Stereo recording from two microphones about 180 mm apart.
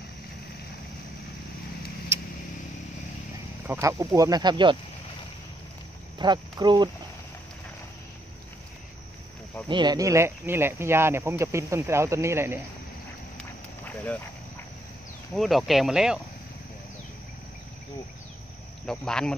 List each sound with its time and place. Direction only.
3.6 s speech: 15° right (ahead or behind)
6.1 s speech: 25° right (ahead or behind)
9.7 s speech: 25° right (ahead or behind)
13.8 s a sound: 10° left (ahead or behind)
15.3 s speech: centre (ahead or behind)
18.9 s speech: 5° left (ahead or behind)